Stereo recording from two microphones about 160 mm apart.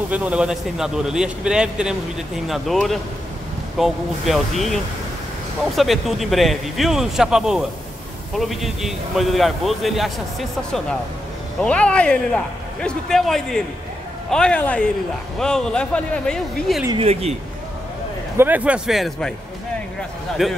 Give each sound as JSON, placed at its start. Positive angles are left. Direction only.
{"t": 0.1, "sound": "speech", "side_deg": -10}
{"t": 5.8, "sound": "speech", "side_deg": 0}
{"t": 16.9, "sound": "speech", "side_deg": -40}
{"t": 18.4, "sound": "speech", "side_deg": -10}
{"t": 20.4, "sound": "speech", "side_deg": 0}